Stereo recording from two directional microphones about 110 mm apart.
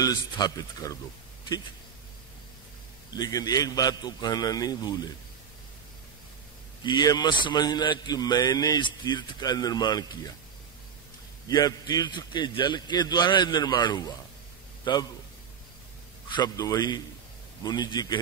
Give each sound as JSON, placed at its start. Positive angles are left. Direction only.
{"t": 0.0, "sound": "a man's voice", "side_deg": 35}
{"t": 3.2, "sound": "a man's voice", "side_deg": 35}
{"t": 6.8, "sound": "a man's voice", "side_deg": 45}
{"t": 11.4, "sound": "a man's voice", "side_deg": 35}
{"t": 16.3, "sound": "a man's voice", "side_deg": 40}